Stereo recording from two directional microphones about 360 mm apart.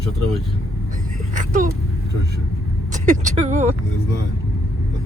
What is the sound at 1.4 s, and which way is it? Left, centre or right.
Vehicle, right.